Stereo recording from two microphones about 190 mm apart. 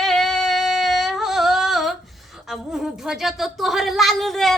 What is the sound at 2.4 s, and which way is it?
Speech, centre (ahead or behind).